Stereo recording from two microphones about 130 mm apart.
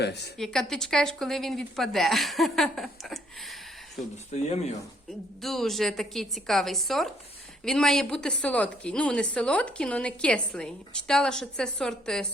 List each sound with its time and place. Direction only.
0.3 s a woman's voice: 5° left (ahead or behind)
4.4 s speech: 55° left (ahead or behind)
5.4 s a woman's voice: centre (ahead or behind)